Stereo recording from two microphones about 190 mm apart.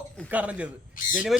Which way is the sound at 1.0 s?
45° left (ahead or behind).